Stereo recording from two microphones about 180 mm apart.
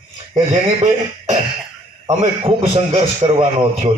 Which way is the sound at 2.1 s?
30° right (ahead or behind).